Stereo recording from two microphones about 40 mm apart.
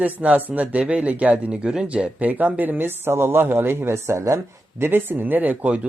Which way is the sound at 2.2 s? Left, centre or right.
Right.